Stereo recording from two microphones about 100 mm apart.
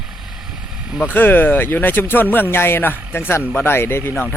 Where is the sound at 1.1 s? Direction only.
20° left (ahead or behind).